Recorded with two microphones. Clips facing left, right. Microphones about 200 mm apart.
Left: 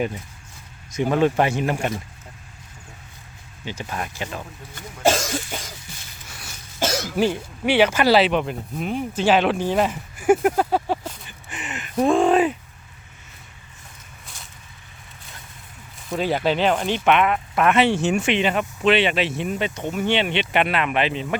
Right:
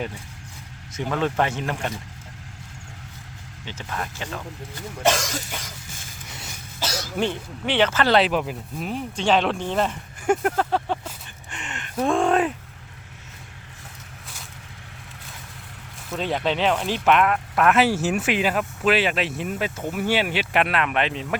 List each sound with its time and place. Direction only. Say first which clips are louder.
0.9 s speech: left 5 dB; 15° left (ahead or behind)
3.7 s speech: left 2 dB; 15° left (ahead or behind)
5.0 s cough: left 2 dB; 30° left (ahead or behind)
6.2 s a sound: right 2 dB; 20° right (ahead or behind)
6.7 s cough: left 6 dB; 50° left (ahead or behind)
7.2 s speech: left 3 dB; 10° left (ahead or behind)
11.5 s a sound: left 4 dB; 5° left (ahead or behind)
16.1 s speech: left 3 dB; 5° left (ahead or behind)